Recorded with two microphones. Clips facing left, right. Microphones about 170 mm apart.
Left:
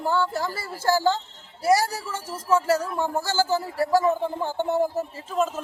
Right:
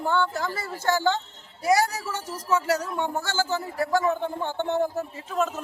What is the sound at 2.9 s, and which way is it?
Speech, centre (ahead or behind).